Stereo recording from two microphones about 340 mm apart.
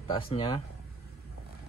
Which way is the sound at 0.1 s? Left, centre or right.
Centre.